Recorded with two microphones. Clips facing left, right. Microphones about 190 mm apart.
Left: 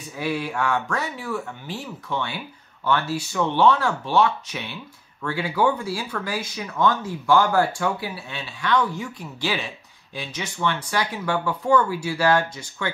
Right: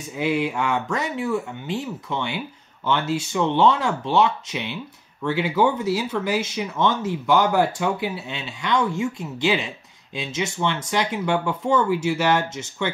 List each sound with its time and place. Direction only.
0.2 s speech: 20° right (ahead or behind)